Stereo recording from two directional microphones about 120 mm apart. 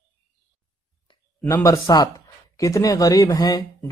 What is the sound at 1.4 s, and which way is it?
Speech, 25° left (ahead or behind).